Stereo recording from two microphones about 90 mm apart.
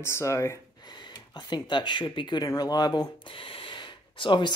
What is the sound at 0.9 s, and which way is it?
Speech, 55° left (ahead or behind).